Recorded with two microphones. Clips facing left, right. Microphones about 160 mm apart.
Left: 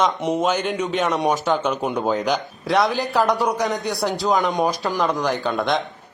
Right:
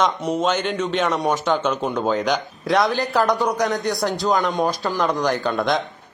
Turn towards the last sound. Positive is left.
turn(degrees=0)  # may be behind; listen again after turning